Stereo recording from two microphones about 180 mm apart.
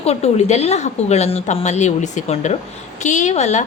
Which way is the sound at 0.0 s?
35° left (ahead or behind).